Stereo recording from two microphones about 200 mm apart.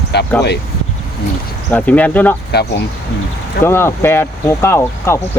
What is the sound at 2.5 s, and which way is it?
Speech, 55° left (ahead or behind).